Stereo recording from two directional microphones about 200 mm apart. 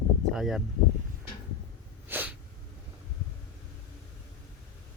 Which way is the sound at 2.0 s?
10° right (ahead or behind).